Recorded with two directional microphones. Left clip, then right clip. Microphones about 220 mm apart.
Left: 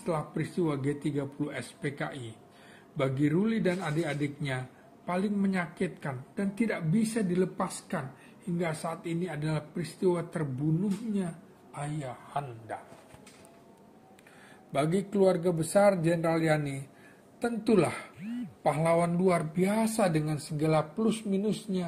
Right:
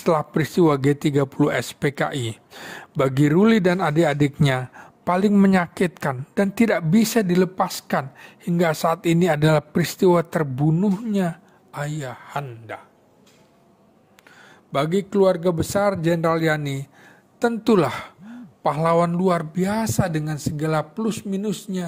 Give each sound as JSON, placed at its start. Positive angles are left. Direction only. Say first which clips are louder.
{"t": 0.0, "sound": "a man's voice", "louder": "right 12 dB", "side_deg": -50}
{"t": 14.7, "sound": "a man's voice", "louder": "right 8 dB", "side_deg": -40}